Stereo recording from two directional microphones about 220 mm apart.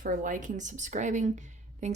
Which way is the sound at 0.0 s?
40° right (ahead or behind).